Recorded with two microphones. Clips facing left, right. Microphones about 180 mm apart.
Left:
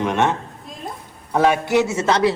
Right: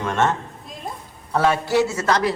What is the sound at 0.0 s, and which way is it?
A man's voice, 15° left (ahead or behind).